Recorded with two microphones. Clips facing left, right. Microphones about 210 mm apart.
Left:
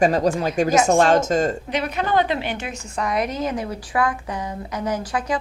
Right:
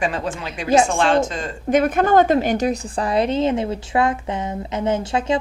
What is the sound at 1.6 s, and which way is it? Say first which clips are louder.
A woman's voice: right 7 dB; 50° right (ahead or behind).